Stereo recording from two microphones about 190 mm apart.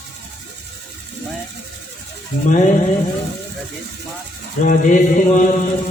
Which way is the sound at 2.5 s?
45° left (ahead or behind).